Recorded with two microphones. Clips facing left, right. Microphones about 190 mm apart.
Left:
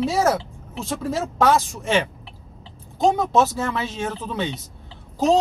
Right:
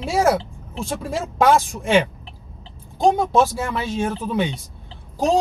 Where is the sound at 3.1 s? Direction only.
10° right (ahead or behind).